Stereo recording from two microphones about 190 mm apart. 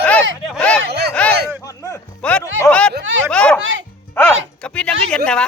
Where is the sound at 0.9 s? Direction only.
55° right (ahead or behind).